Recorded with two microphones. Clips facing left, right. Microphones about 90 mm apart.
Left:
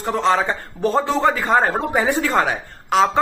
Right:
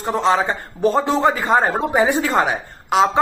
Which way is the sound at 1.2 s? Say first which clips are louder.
Right 1 dB; 20° right (ahead or behind).